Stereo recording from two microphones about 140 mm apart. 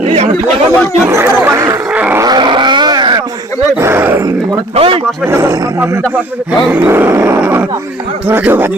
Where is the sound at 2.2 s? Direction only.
30° right (ahead or behind).